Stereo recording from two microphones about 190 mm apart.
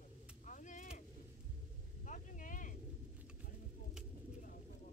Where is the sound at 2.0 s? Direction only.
45° left (ahead or behind).